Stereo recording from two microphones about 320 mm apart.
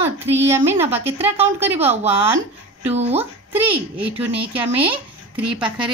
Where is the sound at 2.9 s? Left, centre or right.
Centre.